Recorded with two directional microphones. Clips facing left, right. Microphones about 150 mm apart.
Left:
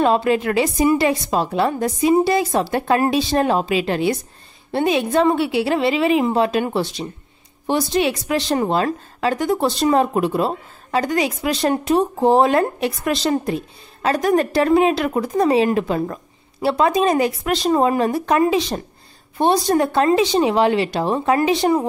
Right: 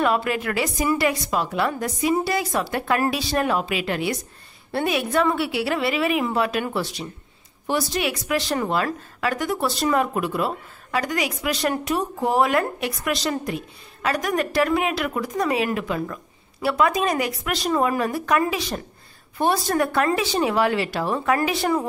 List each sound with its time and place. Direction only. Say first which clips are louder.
0.0 s a woman's voice: left 5 dB; 25° left (ahead or behind)